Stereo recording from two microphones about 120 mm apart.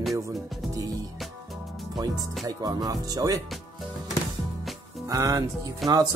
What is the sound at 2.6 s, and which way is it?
Speech, 30° right (ahead or behind).